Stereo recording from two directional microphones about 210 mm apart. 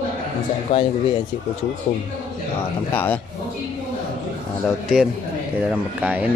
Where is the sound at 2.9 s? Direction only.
10° left (ahead or behind).